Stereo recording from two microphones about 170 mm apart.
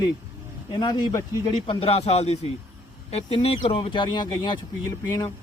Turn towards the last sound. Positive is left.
turn(degrees=20)  # may be behind; listen again after turning